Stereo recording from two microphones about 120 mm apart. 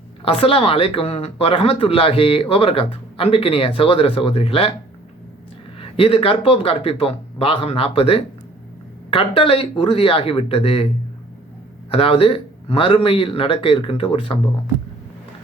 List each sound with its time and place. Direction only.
0.3 s speech: 50° left (ahead or behind)
5.8 s speech: 50° left (ahead or behind)
11.9 s speech: 50° left (ahead or behind)